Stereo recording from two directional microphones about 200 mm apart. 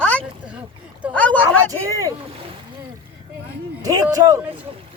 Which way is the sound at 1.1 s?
10° left (ahead or behind).